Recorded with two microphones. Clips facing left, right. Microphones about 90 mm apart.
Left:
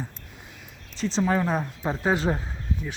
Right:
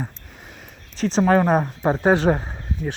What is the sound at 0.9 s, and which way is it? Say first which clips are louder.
Speech: right 7 dB; 65° right (ahead or behind).